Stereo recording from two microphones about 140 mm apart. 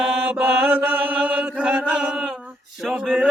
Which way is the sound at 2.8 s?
5° right (ahead or behind).